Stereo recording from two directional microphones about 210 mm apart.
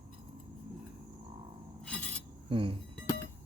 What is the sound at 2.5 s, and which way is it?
Speech, 25° right (ahead or behind).